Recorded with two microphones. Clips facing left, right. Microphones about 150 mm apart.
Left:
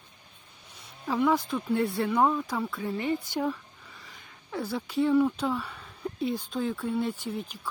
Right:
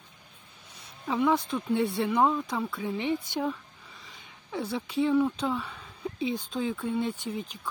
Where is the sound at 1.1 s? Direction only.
Centre (ahead or behind).